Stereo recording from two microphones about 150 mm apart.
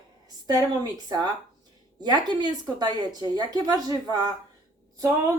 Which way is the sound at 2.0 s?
30° right (ahead or behind).